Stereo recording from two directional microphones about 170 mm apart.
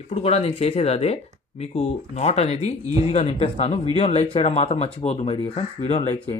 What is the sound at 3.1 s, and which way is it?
Speech, 40° left (ahead or behind).